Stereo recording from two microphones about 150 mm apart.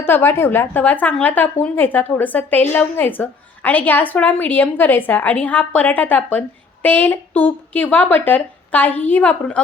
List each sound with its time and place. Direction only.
0.0 s speech: 15° left (ahead or behind)